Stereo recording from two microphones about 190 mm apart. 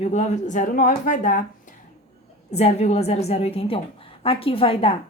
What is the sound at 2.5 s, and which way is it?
A woman's voice, 35° left (ahead or behind).